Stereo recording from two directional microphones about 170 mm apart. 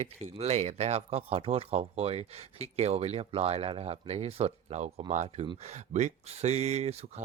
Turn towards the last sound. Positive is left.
turn(degrees=-40)  # may be behind; listen again after turning